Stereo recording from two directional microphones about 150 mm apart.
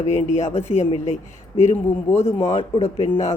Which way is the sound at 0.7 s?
50° left (ahead or behind).